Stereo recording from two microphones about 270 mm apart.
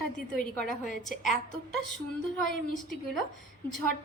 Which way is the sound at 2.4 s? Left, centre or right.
Left.